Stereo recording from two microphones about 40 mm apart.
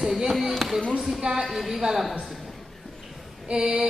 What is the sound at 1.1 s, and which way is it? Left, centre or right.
Speech, centre.